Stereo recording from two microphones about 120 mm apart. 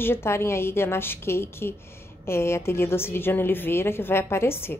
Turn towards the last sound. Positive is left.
turn(degrees=20)  # may be behind; listen again after turning